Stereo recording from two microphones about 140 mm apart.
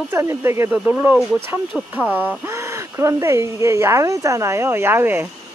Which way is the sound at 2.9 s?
20° right (ahead or behind).